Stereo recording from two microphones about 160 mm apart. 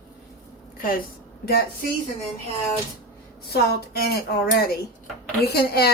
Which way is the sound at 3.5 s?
80° left.